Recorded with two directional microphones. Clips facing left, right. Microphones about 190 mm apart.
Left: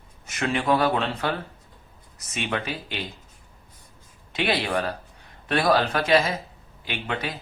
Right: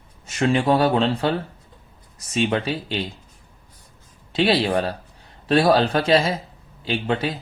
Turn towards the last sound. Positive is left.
turn(degrees=-30)  # may be behind; listen again after turning